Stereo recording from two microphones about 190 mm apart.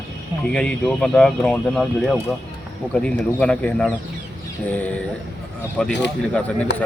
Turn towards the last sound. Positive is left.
turn(degrees=65)  # may be behind; listen again after turning